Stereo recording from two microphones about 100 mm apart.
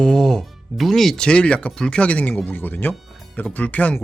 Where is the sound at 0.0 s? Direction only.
5° left (ahead or behind).